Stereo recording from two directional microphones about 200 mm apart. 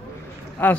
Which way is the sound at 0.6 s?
10° left (ahead or behind).